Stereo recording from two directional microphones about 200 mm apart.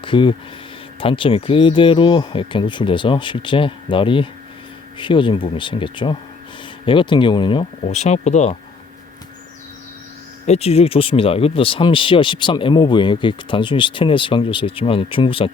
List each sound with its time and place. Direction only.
0.0 s speech: 25° left (ahead or behind)
10.4 s speech: 30° left (ahead or behind)